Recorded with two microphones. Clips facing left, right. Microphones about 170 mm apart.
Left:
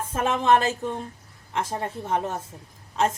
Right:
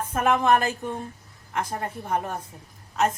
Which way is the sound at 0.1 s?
25° left (ahead or behind).